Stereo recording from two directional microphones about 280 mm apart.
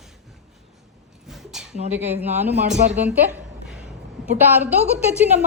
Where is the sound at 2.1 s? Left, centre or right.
Right.